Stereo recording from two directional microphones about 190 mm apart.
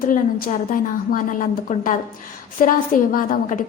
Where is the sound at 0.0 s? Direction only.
50° left (ahead or behind).